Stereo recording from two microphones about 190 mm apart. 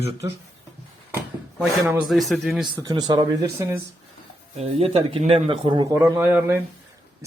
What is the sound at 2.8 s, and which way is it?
Speech, 20° right (ahead or behind).